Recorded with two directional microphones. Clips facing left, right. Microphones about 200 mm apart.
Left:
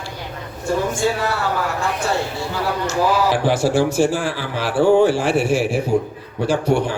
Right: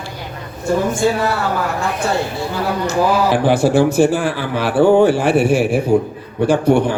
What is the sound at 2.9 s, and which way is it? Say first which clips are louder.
Speech: right 3 dB; 55° right (ahead or behind).